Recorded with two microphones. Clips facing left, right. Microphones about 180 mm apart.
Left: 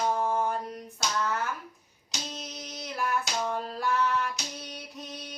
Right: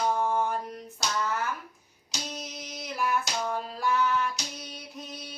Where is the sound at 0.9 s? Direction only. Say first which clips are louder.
Even; centre (ahead or behind).